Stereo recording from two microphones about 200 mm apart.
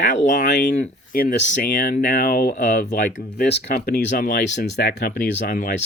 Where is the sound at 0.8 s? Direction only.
45° left (ahead or behind).